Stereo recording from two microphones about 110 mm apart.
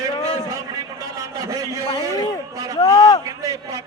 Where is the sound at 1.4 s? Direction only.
30° right (ahead or behind).